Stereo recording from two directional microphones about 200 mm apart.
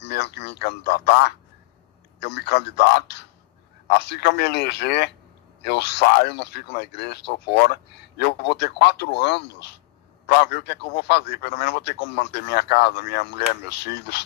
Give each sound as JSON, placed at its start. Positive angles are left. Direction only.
{"t": 0.0, "sound": "a man's voice", "side_deg": 55}